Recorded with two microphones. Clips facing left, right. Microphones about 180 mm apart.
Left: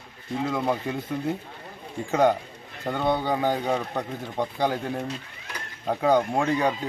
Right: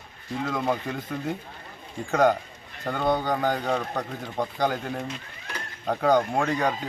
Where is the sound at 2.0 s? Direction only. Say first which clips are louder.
Even; 5° left (ahead or behind).